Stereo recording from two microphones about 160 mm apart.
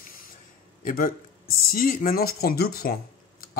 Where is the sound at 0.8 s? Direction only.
60° left (ahead or behind).